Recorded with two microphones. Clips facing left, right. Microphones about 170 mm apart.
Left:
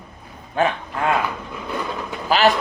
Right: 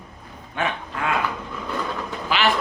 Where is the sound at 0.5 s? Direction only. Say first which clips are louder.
Left 6 dB; 35° left (ahead or behind).